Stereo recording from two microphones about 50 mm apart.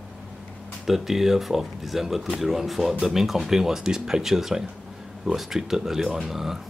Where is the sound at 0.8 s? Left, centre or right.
Centre.